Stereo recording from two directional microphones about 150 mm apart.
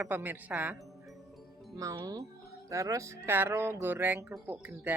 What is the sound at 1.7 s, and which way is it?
Speech, 25° right (ahead or behind).